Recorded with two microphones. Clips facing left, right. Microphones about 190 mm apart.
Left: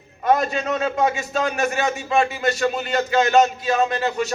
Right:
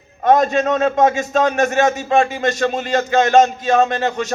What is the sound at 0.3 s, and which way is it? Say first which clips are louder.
A man's voice: right 6 dB; 45° right (ahead or behind).